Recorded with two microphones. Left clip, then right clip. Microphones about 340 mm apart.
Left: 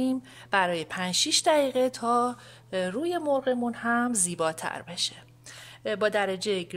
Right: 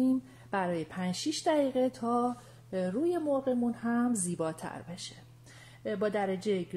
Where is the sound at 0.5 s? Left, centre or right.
Left.